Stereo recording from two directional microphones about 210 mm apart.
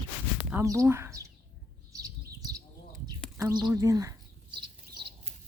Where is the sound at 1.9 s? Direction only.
15° right (ahead or behind).